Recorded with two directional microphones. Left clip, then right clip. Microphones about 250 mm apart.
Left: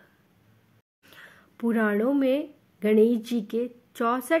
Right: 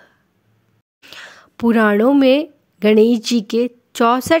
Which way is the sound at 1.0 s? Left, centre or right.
Right.